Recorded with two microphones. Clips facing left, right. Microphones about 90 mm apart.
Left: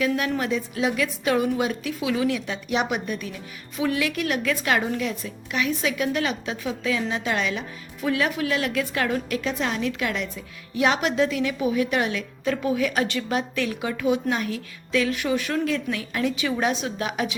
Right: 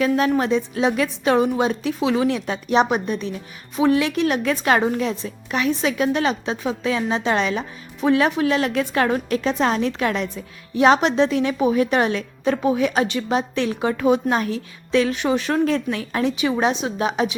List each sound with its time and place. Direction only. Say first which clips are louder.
0.3 s a woman's voice: right 5 dB; 30° right (ahead or behind)
16.3 s a woman's voice: right 4 dB; 20° right (ahead or behind)